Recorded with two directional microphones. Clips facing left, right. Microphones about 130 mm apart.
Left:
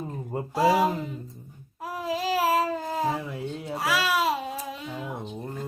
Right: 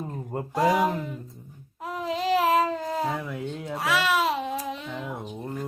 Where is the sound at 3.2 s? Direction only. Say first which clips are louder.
Right 1 dB; 30° left (ahead or behind).